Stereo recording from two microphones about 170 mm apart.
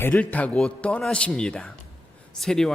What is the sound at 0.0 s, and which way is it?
A man's voice, 10° left (ahead or behind).